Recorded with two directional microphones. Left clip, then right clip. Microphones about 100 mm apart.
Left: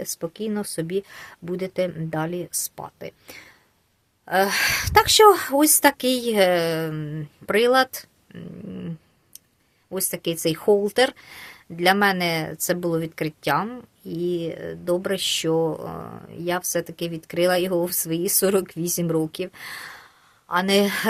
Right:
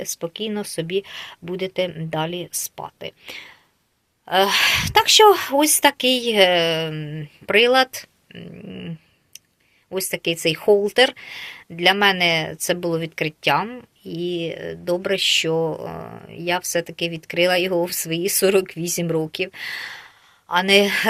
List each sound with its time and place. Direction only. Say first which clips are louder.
0.0 s speech: right 2 dB; 35° left (ahead or behind)
9.9 s speech: right 4 dB; 35° left (ahead or behind)
16.0 s speech: right 2 dB; 20° left (ahead or behind)
16.4 s speech: right 3 dB; 30° left (ahead or behind)